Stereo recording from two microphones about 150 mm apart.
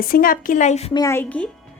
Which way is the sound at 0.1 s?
70° left (ahead or behind).